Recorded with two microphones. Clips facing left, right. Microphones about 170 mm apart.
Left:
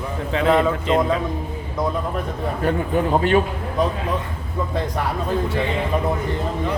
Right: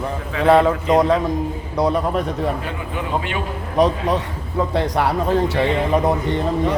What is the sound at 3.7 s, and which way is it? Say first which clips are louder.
Speech: right 5 dB; 80° right.